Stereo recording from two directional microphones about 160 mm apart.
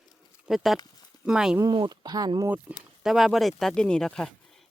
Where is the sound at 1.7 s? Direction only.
30° right (ahead or behind).